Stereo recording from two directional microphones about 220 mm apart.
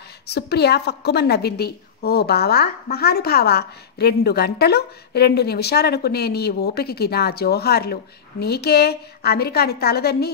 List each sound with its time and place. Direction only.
0.3 s a woman's voice: 50° left (ahead or behind)